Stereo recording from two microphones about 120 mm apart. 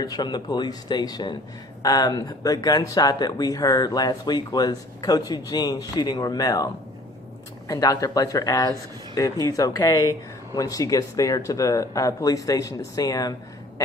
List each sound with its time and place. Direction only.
0.0 s speech: 35° left (ahead or behind)
7.7 s speech: 30° left (ahead or behind)